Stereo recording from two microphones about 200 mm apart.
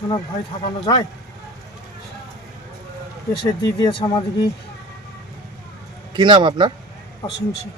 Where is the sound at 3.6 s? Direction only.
20° left (ahead or behind).